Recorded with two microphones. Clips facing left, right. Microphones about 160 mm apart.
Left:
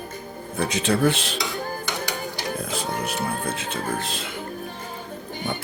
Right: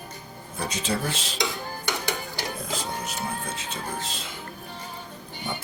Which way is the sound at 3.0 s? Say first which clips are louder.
Left 5 dB; 60° left (ahead or behind).